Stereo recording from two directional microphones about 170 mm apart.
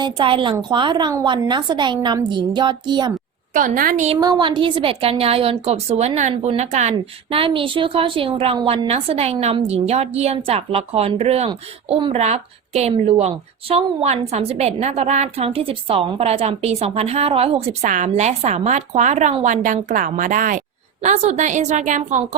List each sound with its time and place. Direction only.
0.0 s a woman's voice: 30° right (ahead or behind)
3.5 s a woman's voice: 55° right (ahead or behind)
4.2 s a woman's voice: 25° right (ahead or behind); by 22.4 s 50° right (ahead or behind)